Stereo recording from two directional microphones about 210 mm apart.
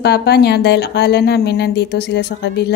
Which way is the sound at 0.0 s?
50° left (ahead or behind).